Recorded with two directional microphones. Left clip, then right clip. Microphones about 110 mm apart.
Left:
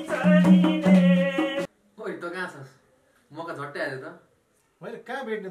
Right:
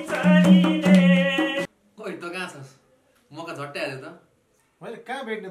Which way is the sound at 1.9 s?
5° right (ahead or behind).